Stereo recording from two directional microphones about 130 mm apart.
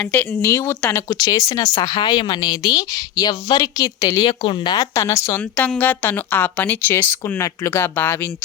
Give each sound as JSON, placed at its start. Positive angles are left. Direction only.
{"t": 0.0, "sound": "a woman's voice", "side_deg": 10}
{"t": 1.0, "sound": "speech", "side_deg": 30}
{"t": 5.4, "sound": "a woman's voice", "side_deg": 10}